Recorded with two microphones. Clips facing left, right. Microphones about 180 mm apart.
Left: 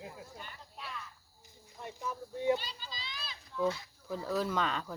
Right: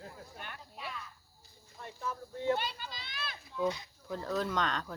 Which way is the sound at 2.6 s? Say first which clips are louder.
Right 6 dB; 60° right (ahead or behind).